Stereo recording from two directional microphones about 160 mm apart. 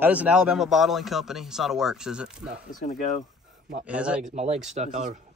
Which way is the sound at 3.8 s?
5° right (ahead or behind).